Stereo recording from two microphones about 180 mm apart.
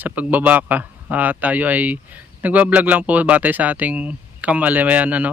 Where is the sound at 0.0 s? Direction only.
10° right (ahead or behind).